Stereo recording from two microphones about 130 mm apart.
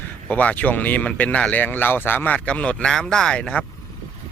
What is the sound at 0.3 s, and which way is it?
Speech, 10° left (ahead or behind).